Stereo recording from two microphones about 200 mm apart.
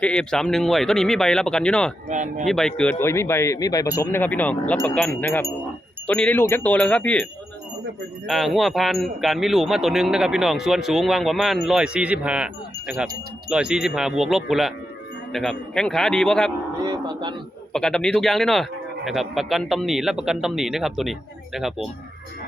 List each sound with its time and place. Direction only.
0.0 s speech: 5° left (ahead or behind)
2.0 s speech: 35° right (ahead or behind)
2.4 s speech: centre (ahead or behind)
8.3 s speech: centre (ahead or behind)
13.5 s speech: 5° right (ahead or behind)
16.8 s speech: 20° right (ahead or behind)
17.7 s speech: 5° left (ahead or behind)